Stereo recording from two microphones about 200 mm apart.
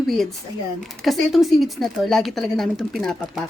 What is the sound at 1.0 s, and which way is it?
A woman's voice, centre (ahead or behind).